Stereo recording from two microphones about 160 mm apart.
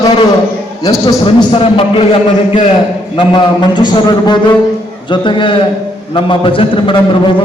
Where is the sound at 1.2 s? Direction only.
35° left (ahead or behind).